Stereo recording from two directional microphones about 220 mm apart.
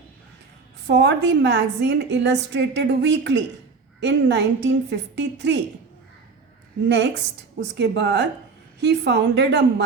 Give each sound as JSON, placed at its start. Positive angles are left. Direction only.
{"t": 0.9, "sound": "a woman's voice", "side_deg": -50}
{"t": 6.8, "sound": "a woman's voice", "side_deg": -50}